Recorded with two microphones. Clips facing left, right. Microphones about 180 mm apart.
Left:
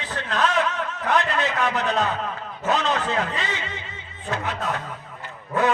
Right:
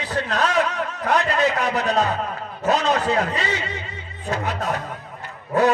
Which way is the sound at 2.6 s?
40° right (ahead or behind).